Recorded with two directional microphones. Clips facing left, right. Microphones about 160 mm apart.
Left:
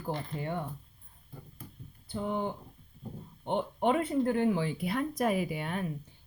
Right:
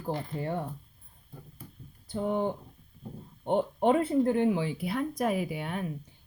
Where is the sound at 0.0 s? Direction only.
35° right (ahead or behind).